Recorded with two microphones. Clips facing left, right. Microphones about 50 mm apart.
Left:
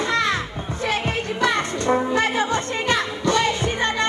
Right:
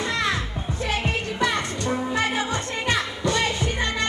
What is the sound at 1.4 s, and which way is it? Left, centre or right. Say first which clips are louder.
Music: left 4 dB; left.